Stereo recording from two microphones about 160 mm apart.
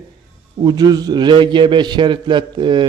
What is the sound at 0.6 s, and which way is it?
A man's voice, 25° right (ahead or behind).